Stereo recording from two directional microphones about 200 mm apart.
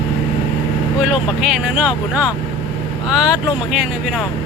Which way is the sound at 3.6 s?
5° right (ahead or behind).